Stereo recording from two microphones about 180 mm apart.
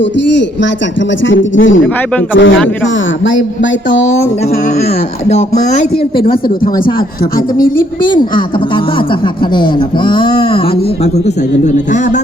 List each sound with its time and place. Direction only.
0.0 s speech: 80° left
5.3 s speech: 40° left (ahead or behind)
8.0 s a man's voice: 25° left (ahead or behind)
11.6 s speech: 40° left (ahead or behind)